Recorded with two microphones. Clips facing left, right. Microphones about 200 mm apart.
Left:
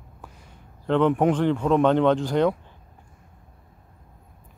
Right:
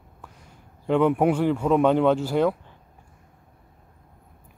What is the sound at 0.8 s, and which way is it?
Speech, 10° right (ahead or behind).